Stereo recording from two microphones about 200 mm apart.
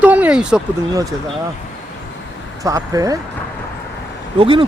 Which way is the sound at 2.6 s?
15° right (ahead or behind).